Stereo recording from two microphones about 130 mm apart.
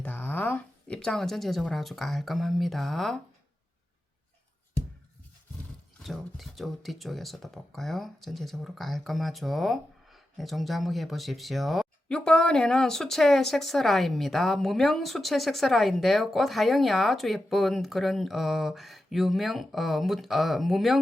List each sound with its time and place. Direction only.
0.0 s speech: 10° left (ahead or behind)
6.0 s speech: centre (ahead or behind)